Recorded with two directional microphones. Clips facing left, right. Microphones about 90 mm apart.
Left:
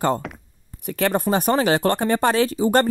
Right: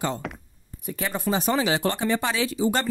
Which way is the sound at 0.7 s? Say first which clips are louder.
Left 8 dB; 70° left (ahead or behind).